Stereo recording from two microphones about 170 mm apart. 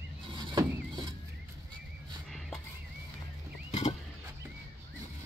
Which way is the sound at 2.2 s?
Centre (ahead or behind).